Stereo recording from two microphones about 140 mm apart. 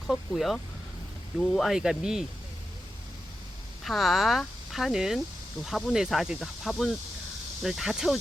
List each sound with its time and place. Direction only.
0.1 s speech: centre (ahead or behind)
3.8 s speech: centre (ahead or behind)